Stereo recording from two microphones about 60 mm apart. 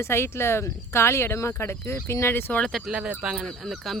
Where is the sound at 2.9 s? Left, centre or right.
Centre.